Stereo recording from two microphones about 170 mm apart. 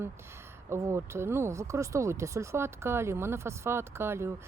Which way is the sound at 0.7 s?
20° right (ahead or behind).